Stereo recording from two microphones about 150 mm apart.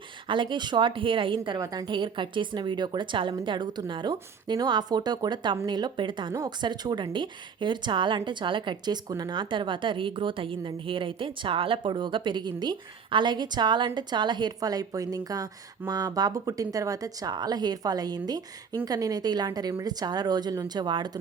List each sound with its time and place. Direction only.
0.3 s a woman's voice: 30° right (ahead or behind)